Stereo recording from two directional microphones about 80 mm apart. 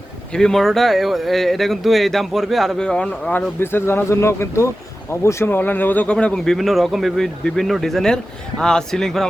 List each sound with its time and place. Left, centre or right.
0.3 s speech: centre
3.6 s speech: left; by 9.2 s centre